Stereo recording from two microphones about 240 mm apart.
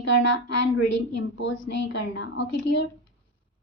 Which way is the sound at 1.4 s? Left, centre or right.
Left.